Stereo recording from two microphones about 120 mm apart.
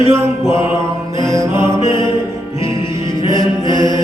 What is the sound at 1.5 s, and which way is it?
Music, 45° left (ahead or behind).